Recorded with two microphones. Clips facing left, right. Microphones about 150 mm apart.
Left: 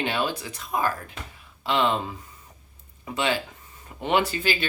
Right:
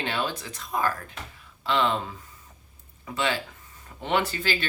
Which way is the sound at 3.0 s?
20° left (ahead or behind).